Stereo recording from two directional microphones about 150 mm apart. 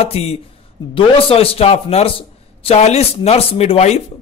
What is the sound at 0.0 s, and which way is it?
A man's voice, 40° left (ahead or behind).